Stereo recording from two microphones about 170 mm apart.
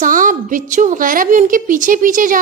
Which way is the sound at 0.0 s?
50° right (ahead or behind).